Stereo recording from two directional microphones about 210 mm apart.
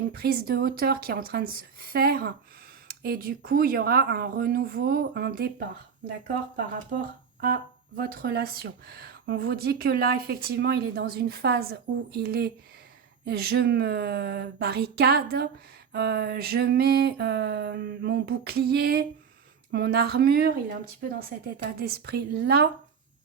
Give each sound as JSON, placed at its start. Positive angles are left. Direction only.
{"t": 0.1, "sound": "speech", "side_deg": -45}
{"t": 6.7, "sound": "speech", "side_deg": -40}